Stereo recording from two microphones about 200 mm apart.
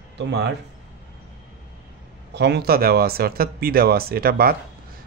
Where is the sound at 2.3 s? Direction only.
55° right (ahead or behind).